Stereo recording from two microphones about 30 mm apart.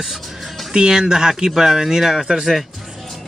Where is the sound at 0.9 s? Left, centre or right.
Right.